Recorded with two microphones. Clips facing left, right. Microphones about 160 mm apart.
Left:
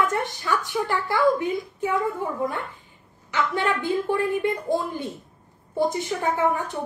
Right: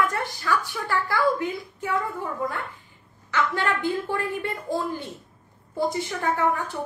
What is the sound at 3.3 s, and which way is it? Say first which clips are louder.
A woman's voice: left 1 dB; 15° left (ahead or behind).